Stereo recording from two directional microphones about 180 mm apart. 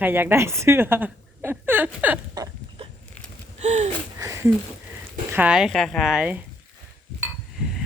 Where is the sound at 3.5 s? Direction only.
40° right (ahead or behind).